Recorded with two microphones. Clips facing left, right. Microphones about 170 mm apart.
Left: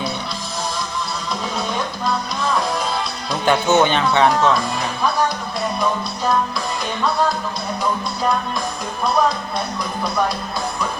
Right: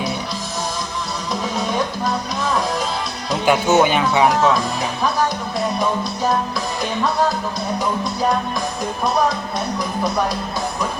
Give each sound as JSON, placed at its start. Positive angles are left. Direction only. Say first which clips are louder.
{"t": 3.4, "sound": "speech", "louder": "right 1 dB", "side_deg": -10}